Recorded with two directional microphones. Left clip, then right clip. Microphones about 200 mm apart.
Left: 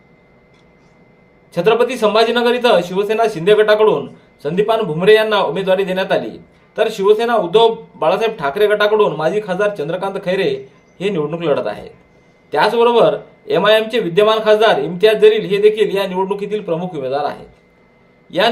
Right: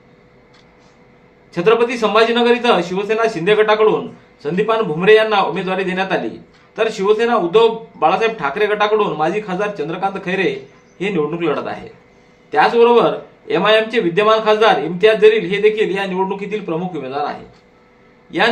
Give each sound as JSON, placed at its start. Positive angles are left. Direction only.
{"t": 1.5, "sound": "a man's voice", "side_deg": 50}